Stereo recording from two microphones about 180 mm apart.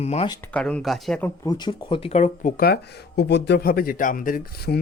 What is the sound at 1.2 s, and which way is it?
Speech, 20° left (ahead or behind).